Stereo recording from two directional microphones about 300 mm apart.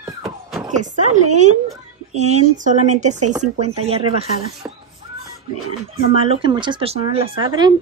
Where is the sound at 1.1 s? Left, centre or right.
Right.